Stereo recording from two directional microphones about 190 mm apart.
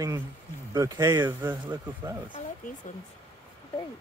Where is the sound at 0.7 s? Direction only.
15° right (ahead or behind).